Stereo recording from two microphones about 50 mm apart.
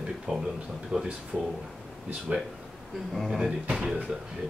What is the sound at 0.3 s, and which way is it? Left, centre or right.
Speech, centre.